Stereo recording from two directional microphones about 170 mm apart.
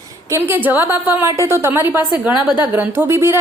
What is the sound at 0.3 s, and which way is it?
A woman's voice, 15° right (ahead or behind).